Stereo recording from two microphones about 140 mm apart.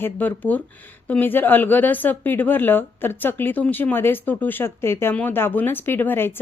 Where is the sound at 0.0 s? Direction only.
15° left (ahead or behind).